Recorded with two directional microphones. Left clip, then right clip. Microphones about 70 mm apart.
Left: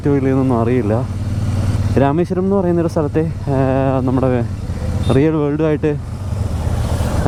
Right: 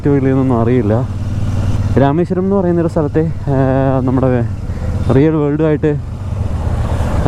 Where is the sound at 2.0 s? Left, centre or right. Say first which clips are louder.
Right 2 dB; centre.